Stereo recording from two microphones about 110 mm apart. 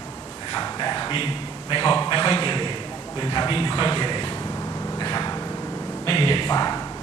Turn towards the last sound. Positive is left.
turn(degrees=35)  # may be behind; listen again after turning